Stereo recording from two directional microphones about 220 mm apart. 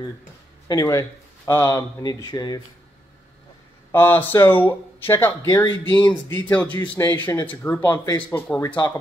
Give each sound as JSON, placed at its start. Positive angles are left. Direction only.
{"t": 0.7, "sound": "speech", "side_deg": 15}
{"t": 3.9, "sound": "speech", "side_deg": 10}